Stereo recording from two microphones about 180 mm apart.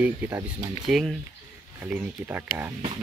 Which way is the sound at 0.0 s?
15° right (ahead or behind).